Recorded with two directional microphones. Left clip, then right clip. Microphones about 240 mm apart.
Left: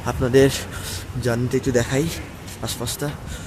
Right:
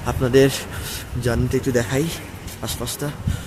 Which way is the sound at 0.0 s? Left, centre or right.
Centre.